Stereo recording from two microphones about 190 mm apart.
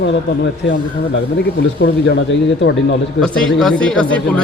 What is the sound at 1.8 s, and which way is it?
Speech, 70° left (ahead or behind).